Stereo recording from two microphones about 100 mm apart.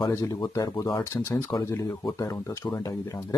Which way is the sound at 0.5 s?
35° left (ahead or behind).